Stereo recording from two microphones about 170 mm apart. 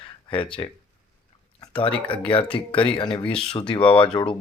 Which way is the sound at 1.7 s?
30° left (ahead or behind).